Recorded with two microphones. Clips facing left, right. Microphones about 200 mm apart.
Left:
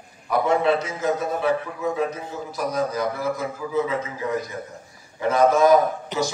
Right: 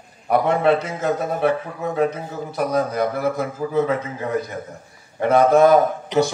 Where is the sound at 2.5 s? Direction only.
55° right (ahead or behind).